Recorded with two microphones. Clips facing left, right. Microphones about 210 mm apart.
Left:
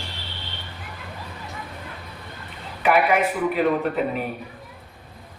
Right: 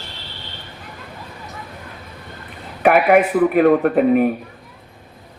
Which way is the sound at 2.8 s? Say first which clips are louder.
Right 6 dB; 55° right (ahead or behind).